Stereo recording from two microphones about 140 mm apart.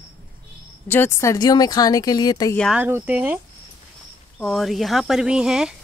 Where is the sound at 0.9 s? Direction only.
15° left (ahead or behind).